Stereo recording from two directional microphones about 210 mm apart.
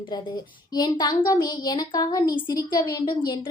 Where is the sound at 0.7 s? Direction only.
20° left (ahead or behind).